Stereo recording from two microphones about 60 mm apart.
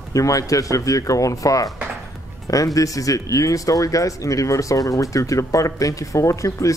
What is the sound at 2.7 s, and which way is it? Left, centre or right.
Speech, left.